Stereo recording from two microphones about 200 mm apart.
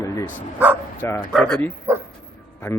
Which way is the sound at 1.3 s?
Centre (ahead or behind).